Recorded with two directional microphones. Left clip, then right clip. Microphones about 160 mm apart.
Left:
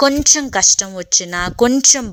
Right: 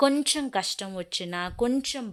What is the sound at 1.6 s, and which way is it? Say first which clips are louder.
Speech: left 16 dB; 40° left (ahead or behind).